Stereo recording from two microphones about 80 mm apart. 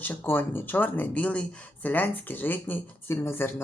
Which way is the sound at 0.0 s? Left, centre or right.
Left.